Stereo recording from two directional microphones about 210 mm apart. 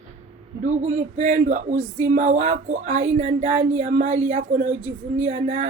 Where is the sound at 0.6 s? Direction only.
35° right (ahead or behind).